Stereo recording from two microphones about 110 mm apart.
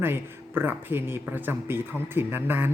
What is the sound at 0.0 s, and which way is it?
A man's voice, 20° right (ahead or behind).